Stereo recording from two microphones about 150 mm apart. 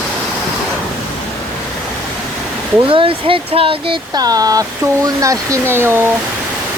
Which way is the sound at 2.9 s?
35° right (ahead or behind).